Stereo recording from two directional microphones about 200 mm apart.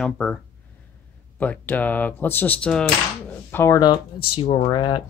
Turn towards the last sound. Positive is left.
turn(degrees=25)  # may be behind; listen again after turning